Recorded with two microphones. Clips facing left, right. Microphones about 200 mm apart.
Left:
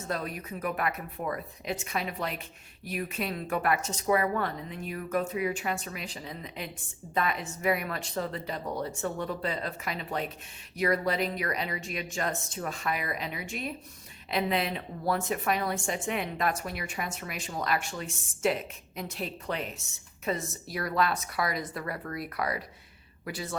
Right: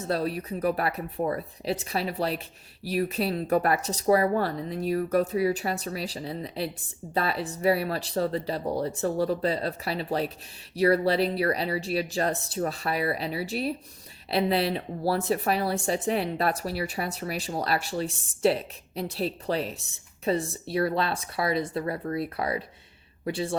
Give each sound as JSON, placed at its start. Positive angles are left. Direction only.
{"t": 0.1, "sound": "a woman's voice", "side_deg": -35}